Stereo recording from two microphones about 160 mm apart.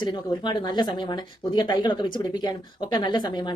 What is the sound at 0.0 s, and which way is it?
Speech, 25° left (ahead or behind).